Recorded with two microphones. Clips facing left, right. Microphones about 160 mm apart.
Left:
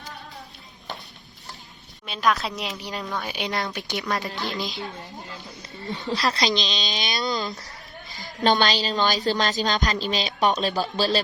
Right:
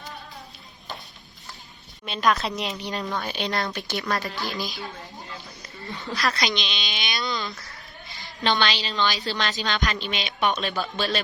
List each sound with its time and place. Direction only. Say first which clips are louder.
2.0 s a woman's voice: even; centre (ahead or behind)
3.4 s a woman's voice: right 1 dB; 10° left (ahead or behind)
6.6 s a woman's voice: left 4 dB; 35° left (ahead or behind)